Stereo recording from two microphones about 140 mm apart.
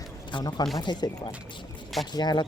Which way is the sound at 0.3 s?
30° left (ahead or behind).